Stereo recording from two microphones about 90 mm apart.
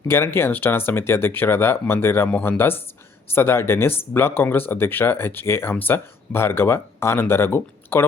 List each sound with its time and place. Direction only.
0.1 s speech: 25° left (ahead or behind)